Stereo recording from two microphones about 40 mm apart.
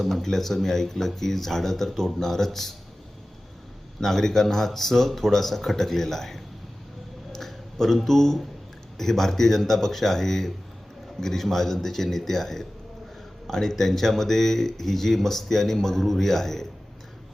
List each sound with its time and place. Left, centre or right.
0.0 s speech: centre
4.0 s speech: centre